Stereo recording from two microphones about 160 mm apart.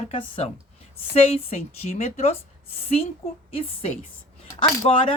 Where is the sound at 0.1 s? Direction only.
35° left (ahead or behind).